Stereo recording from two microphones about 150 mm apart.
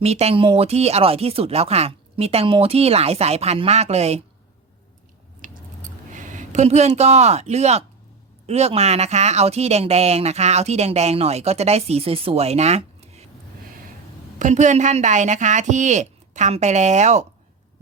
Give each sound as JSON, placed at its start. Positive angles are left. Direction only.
{"t": 0.0, "sound": "speech", "side_deg": -45}
{"t": 5.4, "sound": "squish", "side_deg": -60}
{"t": 6.1, "sound": "speech", "side_deg": -55}
{"t": 14.3, "sound": "speech", "side_deg": -55}